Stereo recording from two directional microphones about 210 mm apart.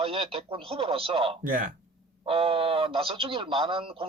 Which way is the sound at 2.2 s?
25° right (ahead or behind).